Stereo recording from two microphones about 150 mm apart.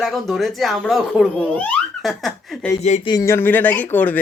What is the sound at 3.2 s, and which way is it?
Speech, 15° left (ahead or behind).